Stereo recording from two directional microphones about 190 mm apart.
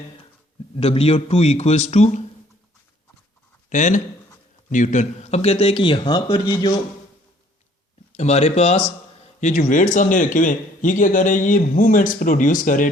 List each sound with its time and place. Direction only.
0.8 s a man's voice: 30° left (ahead or behind)
3.7 s a man's voice: 40° left (ahead or behind); by 6.7 s 25° left (ahead or behind)
8.1 s a man's voice: 35° left (ahead or behind)